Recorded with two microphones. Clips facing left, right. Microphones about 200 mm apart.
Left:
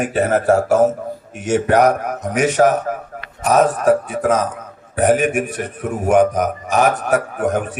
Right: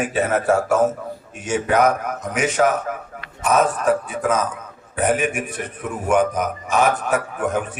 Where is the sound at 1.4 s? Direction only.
70° left (ahead or behind).